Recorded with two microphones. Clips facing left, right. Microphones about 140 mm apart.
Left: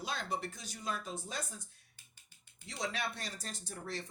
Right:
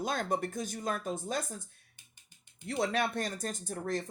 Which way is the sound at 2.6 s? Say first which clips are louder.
Right 8 dB; 55° right (ahead or behind).